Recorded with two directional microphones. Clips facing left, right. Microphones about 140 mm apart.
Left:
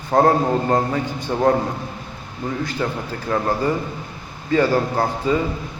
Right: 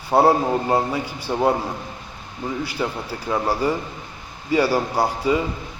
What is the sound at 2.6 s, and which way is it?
A man's voice, 10° right (ahead or behind).